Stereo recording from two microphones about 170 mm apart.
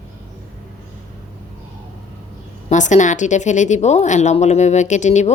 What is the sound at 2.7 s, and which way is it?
Speech, 45° left (ahead or behind).